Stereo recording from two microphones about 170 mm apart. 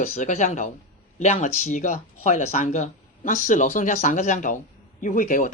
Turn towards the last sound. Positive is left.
turn(degrees=50)  # may be behind; listen again after turning